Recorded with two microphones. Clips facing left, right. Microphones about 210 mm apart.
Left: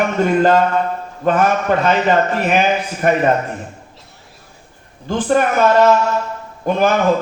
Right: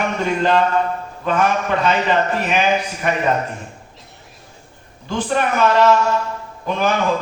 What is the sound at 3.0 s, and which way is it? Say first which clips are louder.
Speech: left 7 dB; 45° left (ahead or behind).